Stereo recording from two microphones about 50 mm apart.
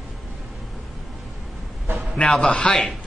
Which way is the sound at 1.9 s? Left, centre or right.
Right.